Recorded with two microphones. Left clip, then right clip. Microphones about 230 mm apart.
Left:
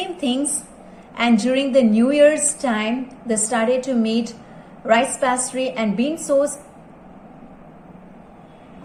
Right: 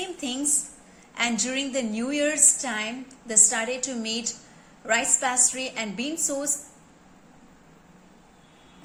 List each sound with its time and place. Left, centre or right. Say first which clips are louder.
0.0 s a woman's voice: left 7 dB; centre